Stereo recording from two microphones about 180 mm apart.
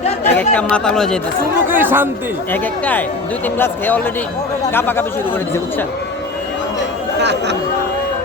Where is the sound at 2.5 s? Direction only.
10° left (ahead or behind).